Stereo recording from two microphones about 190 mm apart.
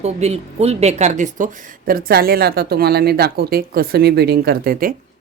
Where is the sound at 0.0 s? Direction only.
35° right (ahead or behind).